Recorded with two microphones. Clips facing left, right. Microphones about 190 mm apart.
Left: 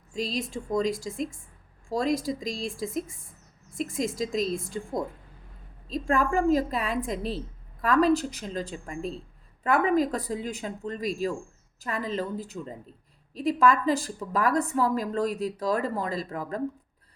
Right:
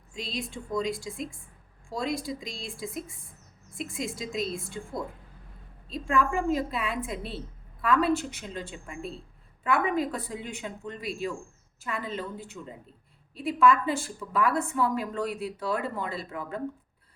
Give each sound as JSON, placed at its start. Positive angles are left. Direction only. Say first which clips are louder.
{"t": 0.1, "sound": "a woman's voice", "louder": "left 5 dB", "side_deg": 45}